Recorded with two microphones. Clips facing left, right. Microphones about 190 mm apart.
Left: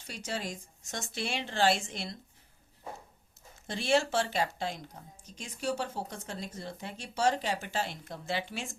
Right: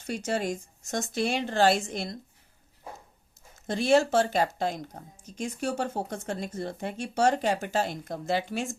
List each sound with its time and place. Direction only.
0.3 s a woman's voice: 50° right (ahead or behind)
3.7 s a woman's voice: 45° right (ahead or behind)